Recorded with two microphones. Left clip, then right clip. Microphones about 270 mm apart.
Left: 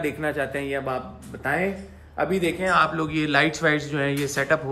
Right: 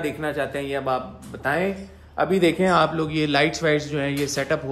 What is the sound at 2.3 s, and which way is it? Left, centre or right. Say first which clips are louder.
Speech: right 4 dB; right.